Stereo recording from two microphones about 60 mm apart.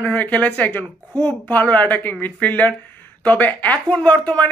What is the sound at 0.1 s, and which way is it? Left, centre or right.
Speech, left.